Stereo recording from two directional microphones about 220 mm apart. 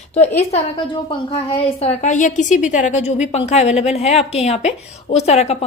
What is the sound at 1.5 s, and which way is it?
A woman's voice, 25° left (ahead or behind).